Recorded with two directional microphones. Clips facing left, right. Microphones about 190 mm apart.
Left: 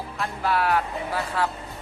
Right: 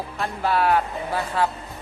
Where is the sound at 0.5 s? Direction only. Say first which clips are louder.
Right 3 dB; 25° right (ahead or behind).